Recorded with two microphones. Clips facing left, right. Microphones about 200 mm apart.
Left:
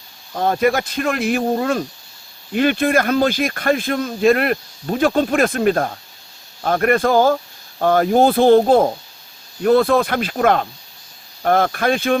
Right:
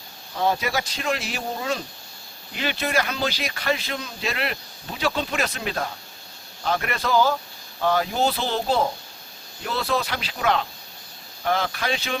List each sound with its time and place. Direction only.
0.3 s speech: 55° left (ahead or behind)